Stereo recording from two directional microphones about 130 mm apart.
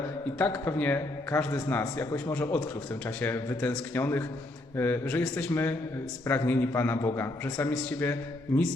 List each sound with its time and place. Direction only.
0.3 s a man's voice: 15° left (ahead or behind)
7.9 s a man's voice: 15° left (ahead or behind)